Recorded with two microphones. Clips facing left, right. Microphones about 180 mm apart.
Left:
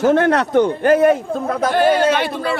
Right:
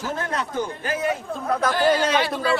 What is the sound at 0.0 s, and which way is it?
A man's voice, 75° left (ahead or behind).